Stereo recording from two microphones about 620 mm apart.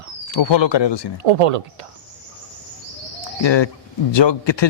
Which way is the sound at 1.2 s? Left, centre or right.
Right.